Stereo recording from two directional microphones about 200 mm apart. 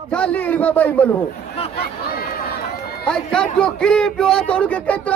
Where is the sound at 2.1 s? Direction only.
50° left (ahead or behind).